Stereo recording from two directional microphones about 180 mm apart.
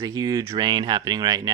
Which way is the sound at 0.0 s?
20° right (ahead or behind).